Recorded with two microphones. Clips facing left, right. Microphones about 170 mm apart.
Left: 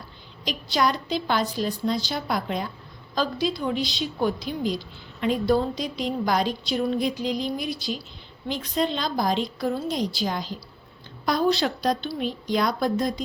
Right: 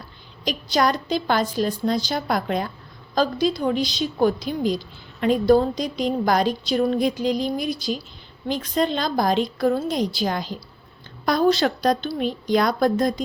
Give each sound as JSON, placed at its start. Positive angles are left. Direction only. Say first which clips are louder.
{"t": 0.4, "sound": "a woman's voice", "louder": "right 3 dB", "side_deg": -45}